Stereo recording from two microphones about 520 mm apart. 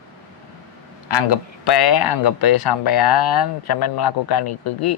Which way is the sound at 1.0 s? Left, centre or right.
Left.